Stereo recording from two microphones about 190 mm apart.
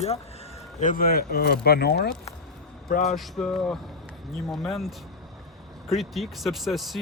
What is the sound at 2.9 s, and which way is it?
Speech, 40° left (ahead or behind).